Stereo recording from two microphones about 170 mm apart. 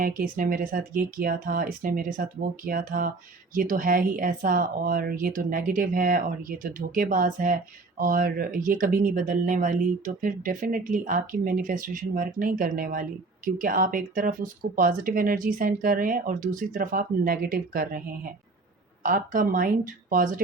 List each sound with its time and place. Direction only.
0.0 s speech: 55° right (ahead or behind)
19.0 s speech: 55° right (ahead or behind)